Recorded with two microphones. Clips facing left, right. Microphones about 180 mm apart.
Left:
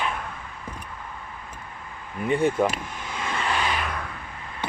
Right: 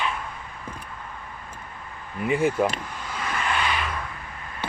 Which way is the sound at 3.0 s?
25° left (ahead or behind).